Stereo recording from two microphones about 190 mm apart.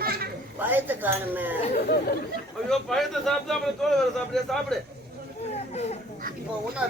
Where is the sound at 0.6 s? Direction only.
10° right (ahead or behind).